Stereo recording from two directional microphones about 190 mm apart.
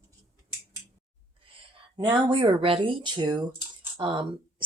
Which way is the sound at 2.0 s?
25° right (ahead or behind).